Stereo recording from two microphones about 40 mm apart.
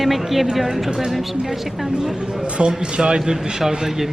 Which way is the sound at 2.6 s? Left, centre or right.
Right.